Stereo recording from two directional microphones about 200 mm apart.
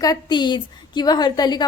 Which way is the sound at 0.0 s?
20° left (ahead or behind).